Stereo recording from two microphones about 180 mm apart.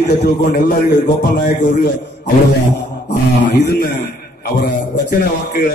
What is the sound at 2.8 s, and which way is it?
Music, 70° left (ahead or behind).